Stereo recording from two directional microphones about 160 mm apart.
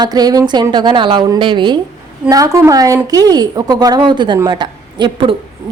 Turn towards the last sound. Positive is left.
turn(degrees=-30)  # may be behind; listen again after turning